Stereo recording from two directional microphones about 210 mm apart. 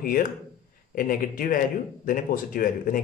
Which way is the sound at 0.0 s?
40° left (ahead or behind).